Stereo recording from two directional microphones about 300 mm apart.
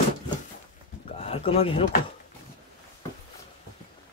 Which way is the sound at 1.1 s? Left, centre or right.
Centre.